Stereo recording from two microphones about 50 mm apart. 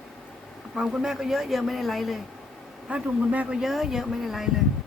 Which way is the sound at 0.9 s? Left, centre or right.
Centre.